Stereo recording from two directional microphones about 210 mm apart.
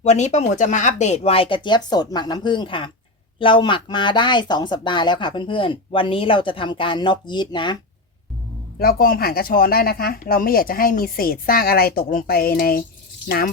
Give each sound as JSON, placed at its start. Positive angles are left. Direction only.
{"t": 0.0, "sound": "speech", "side_deg": 35}
{"t": 8.8, "sound": "speech", "side_deg": 45}